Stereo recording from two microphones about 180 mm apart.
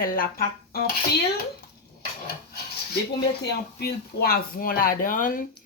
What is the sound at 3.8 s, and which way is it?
Speech, 60° left (ahead or behind).